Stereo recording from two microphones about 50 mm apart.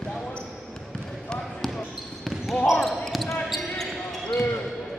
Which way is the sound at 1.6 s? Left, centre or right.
Centre.